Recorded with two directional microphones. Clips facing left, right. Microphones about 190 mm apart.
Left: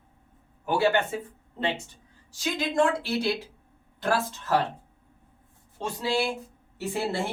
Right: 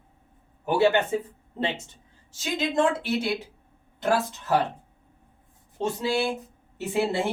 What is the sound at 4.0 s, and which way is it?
Speech, 20° right (ahead or behind).